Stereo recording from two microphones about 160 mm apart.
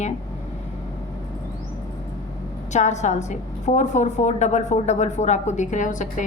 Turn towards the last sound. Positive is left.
turn(degrees=50)  # may be behind; listen again after turning